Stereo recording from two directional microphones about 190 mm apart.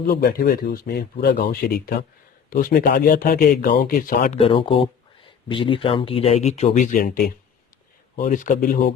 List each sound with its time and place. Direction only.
0.0 s speech: 55° left (ahead or behind)
4.3 s speech: 30° left (ahead or behind); by 7.3 s 55° left (ahead or behind)
8.2 s speech: 45° left (ahead or behind)